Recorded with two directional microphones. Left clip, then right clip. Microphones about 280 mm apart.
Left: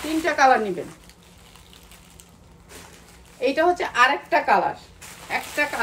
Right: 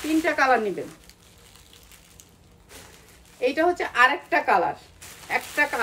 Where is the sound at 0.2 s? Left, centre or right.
Centre.